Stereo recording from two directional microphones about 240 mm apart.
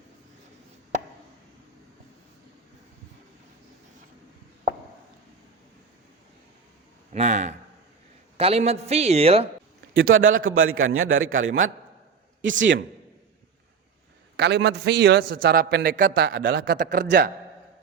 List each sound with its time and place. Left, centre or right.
7.1 s a man's voice: right
9.9 s a man's voice: right
14.3 s a man's voice: right